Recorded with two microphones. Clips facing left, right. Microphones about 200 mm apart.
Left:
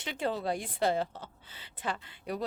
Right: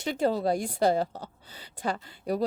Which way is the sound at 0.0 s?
40° right (ahead or behind).